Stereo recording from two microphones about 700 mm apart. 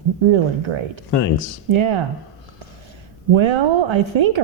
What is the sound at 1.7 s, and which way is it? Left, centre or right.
Speech, right.